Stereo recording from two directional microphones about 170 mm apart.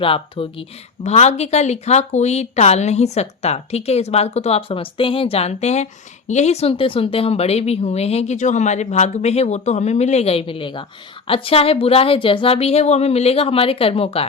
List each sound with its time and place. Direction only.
0.0 s speech: 30° left (ahead or behind)